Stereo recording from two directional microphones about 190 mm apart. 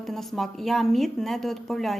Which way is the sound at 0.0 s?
Centre (ahead or behind).